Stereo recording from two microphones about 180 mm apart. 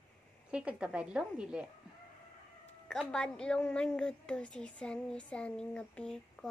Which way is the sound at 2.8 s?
5° left (ahead or behind).